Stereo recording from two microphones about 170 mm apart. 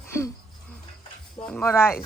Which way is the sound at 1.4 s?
10° left (ahead or behind).